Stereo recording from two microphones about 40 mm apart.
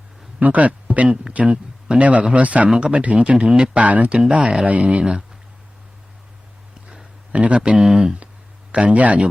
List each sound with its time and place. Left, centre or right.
0.3 s a man's voice: right
1.0 s speech: centre
1.3 s speech: right
2.7 s speech: right
3.8 s speech: right
6.8 s a sound: right
7.4 s speech: right
7.8 s speech: centre
8.7 s speech: right